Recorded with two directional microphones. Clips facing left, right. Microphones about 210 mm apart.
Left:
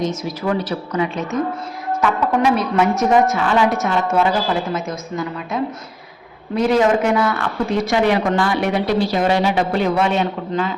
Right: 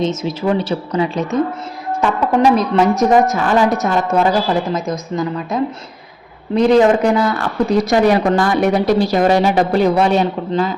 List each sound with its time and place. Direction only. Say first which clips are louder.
0.0 s a woman's voice: right 4 dB; 25° right (ahead or behind)
6.6 s a woman's voice: right 4 dB; 35° right (ahead or behind)